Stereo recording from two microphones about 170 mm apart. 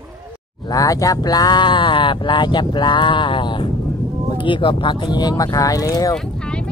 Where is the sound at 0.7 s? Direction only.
20° left (ahead or behind).